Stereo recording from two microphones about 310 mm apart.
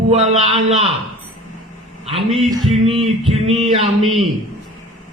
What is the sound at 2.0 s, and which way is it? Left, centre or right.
Speech, centre.